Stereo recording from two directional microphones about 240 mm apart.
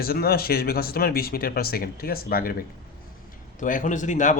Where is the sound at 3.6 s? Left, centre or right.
Left.